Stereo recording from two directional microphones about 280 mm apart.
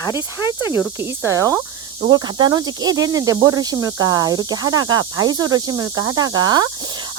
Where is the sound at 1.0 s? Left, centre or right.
Centre.